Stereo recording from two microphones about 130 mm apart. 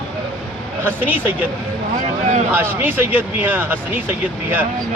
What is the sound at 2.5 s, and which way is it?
Speech, 15° right (ahead or behind).